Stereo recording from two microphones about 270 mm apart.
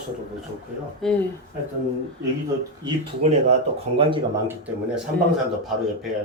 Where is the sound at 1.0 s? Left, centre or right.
Centre.